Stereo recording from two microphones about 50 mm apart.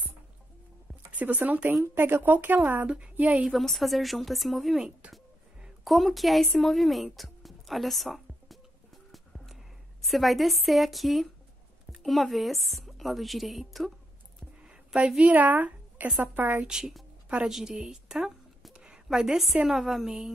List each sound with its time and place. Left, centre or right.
1.1 s speech: right
1.7 s speech: right
2.9 s a woman's voice: right
3.3 s a woman's voice: centre
5.9 s a woman's voice: centre
10.0 s a woman's voice: centre
15.0 s speech: centre
15.2 s speech: right
16.6 s a woman's voice: centre